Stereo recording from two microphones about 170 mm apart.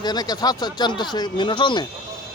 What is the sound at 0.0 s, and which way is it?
Speech, 25° left (ahead or behind).